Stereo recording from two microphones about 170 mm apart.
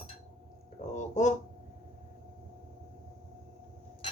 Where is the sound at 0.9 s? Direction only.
45° left (ahead or behind).